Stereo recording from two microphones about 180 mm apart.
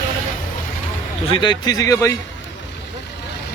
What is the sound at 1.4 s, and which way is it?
Speech, 25° left (ahead or behind).